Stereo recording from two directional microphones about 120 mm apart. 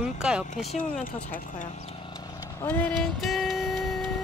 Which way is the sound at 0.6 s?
90° left.